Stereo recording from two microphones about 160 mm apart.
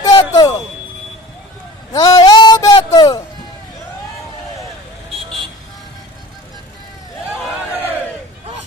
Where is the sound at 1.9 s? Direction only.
25° left (ahead or behind).